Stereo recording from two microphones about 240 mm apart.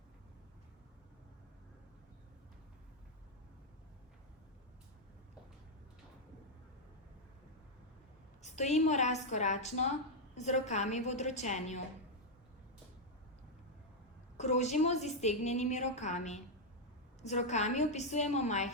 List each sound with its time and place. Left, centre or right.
8.4 s a woman's voice: left
14.3 s a woman's voice: left